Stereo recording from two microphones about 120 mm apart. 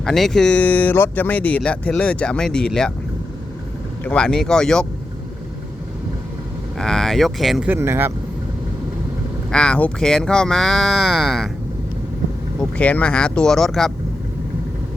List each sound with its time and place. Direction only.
0.0 s speech: 5° left (ahead or behind)
4.0 s speech: 10° left (ahead or behind)
6.7 s speech: 5° left (ahead or behind)
7.7 s speech: 20° right (ahead or behind)
9.5 s speech: 10° left (ahead or behind)
12.5 s speech: 10° left (ahead or behind)